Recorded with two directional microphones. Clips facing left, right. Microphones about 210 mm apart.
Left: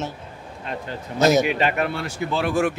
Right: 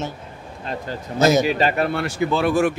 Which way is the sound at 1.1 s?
Centre (ahead or behind).